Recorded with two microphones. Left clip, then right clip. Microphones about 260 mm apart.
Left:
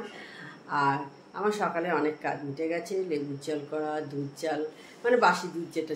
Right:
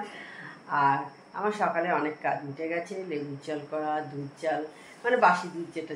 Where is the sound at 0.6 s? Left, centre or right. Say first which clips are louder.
Right 2 dB; centre.